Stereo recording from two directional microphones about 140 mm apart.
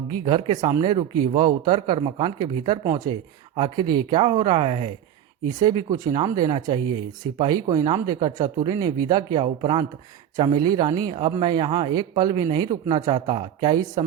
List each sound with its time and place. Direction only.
0.1 s speech: 35° right (ahead or behind)
5.5 s speech: 30° right (ahead or behind)